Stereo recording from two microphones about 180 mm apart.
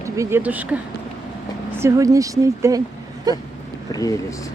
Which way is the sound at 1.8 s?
15° right (ahead or behind).